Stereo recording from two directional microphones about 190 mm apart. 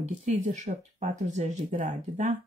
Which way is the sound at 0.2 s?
40° right (ahead or behind).